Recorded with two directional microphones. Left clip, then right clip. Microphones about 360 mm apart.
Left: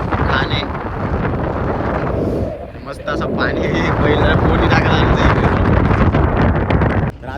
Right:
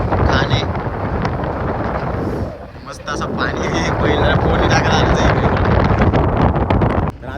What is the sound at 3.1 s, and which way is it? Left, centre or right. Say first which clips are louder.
Speech: left 2 dB; centre.